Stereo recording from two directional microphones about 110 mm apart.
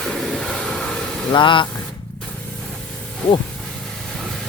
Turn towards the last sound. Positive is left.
turn(degrees=5)  # may be behind; listen again after turning